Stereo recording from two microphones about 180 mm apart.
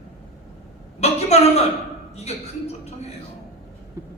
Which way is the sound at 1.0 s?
35° left (ahead or behind).